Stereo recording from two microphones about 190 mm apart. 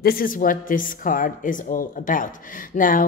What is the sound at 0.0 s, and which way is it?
Speech, 50° left (ahead or behind).